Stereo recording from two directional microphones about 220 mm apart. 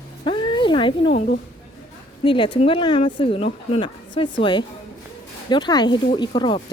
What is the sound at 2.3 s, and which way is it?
Speech, 25° left (ahead or behind).